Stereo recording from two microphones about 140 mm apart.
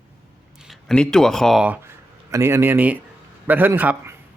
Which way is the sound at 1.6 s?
15° right (ahead or behind).